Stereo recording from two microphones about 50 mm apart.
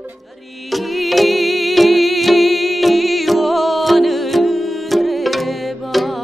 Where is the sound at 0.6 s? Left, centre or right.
Centre.